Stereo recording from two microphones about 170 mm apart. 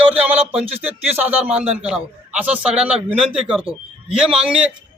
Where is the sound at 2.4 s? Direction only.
5° right (ahead or behind).